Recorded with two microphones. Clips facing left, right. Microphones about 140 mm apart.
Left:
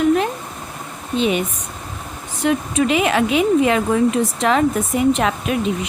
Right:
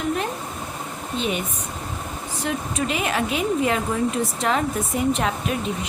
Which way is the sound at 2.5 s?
90° left.